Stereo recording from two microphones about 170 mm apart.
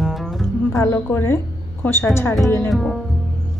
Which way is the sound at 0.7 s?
15° left (ahead or behind).